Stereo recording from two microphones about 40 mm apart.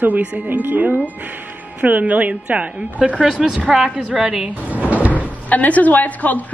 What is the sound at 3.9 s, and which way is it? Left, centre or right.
Speech, right.